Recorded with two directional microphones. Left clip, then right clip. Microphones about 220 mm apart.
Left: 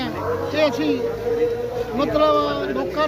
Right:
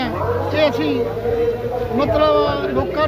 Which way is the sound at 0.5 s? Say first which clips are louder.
Right 2 dB; centre (ahead or behind).